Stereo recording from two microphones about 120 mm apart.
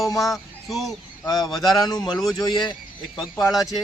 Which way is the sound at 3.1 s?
Centre (ahead or behind).